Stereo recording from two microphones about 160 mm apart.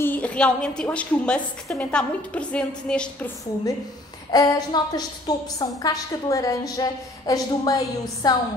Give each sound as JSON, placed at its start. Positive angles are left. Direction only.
{"t": 0.0, "sound": "a woman's voice", "side_deg": 10}
{"t": 4.3, "sound": "a woman's voice", "side_deg": 25}